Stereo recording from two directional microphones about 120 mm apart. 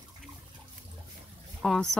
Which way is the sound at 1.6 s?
5° left (ahead or behind).